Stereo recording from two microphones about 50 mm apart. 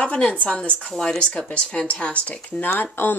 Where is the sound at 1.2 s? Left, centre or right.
Left.